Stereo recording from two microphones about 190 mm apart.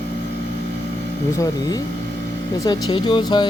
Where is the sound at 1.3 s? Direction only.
20° left (ahead or behind).